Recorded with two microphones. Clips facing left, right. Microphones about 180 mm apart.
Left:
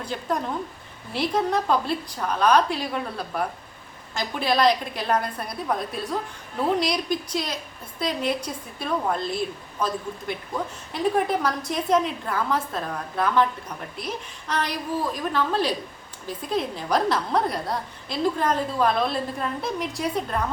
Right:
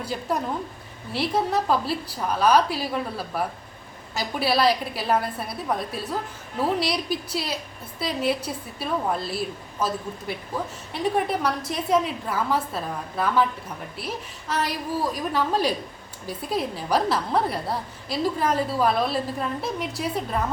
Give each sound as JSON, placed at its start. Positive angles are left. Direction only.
{"t": 0.0, "sound": "a woman's voice", "side_deg": -10}
{"t": 10.9, "sound": "a woman's voice", "side_deg": 0}